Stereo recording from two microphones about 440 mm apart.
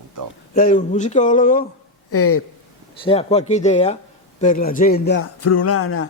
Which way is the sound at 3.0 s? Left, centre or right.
Centre.